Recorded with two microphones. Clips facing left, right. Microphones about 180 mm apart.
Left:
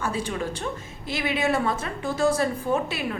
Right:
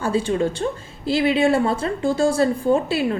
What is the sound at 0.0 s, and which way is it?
A woman's voice, 30° right (ahead or behind).